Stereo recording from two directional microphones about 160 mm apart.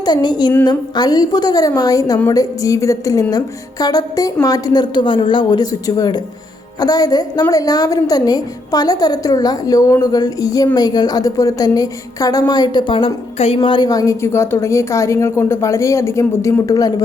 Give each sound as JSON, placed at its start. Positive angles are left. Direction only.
{"t": 0.0, "sound": "a woman's voice", "side_deg": 25}